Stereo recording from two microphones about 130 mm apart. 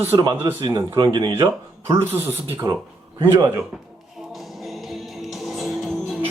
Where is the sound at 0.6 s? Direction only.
40° right (ahead or behind).